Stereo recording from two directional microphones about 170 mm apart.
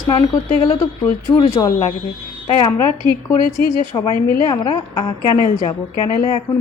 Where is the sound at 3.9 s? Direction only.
25° left (ahead or behind).